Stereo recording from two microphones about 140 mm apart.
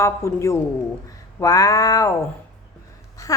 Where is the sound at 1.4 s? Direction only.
25° left (ahead or behind).